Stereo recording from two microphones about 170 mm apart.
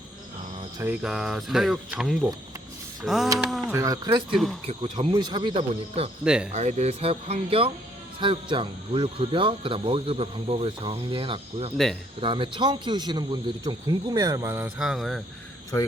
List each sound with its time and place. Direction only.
0.8 s speech: 5° right (ahead or behind)
3.7 s a man's voice: 20° right (ahead or behind)
4.6 s speech: 35° right (ahead or behind)
5.1 s a man's voice: 25° right (ahead or behind)
6.2 s speech: 5° right (ahead or behind)
6.5 s a man's voice: 40° right (ahead or behind); by 14.7 s 15° right (ahead or behind)
14.8 s speech: centre (ahead or behind)